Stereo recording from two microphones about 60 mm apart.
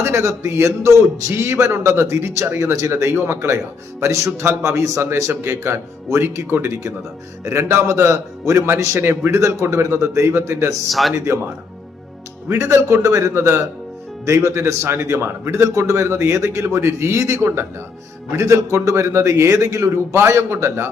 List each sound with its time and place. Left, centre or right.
0.0 s a man's voice: right
9.0 s a man's voice: right
9.4 s a man's voice: right
10.8 s speech: centre
12.5 s a man's voice: right